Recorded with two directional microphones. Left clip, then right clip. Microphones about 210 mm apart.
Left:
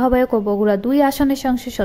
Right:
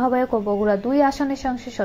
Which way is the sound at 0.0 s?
35° left (ahead or behind).